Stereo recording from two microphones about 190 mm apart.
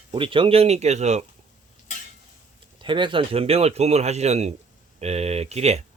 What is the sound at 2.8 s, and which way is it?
Speech, 25° right (ahead or behind).